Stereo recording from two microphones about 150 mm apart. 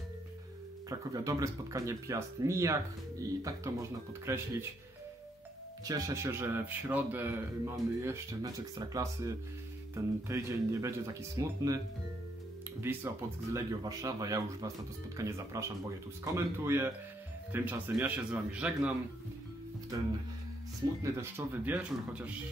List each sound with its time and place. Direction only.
0.8 s speech: 20° right (ahead or behind)
5.9 s a man's voice: 20° right (ahead or behind)
12.8 s a man's voice: 20° right (ahead or behind)
21.0 s a man's voice: 15° right (ahead or behind)